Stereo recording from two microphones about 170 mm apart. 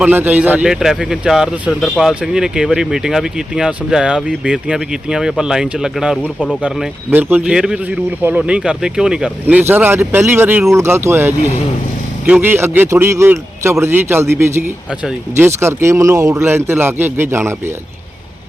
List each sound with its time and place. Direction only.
0.0 s a man's voice: 10° right (ahead or behind)